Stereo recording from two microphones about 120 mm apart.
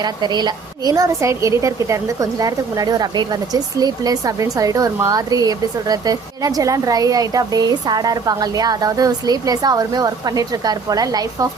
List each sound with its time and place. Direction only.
0.0 s a woman's voice: 40° right (ahead or behind)